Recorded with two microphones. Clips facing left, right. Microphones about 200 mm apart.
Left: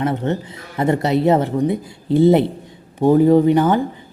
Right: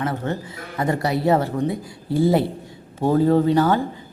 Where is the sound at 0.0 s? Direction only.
20° left (ahead or behind).